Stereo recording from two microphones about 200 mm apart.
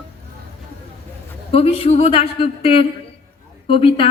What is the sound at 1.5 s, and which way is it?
A woman's voice, 30° left (ahead or behind).